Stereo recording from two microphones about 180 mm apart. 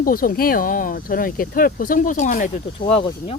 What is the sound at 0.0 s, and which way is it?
Speech, 50° left (ahead or behind).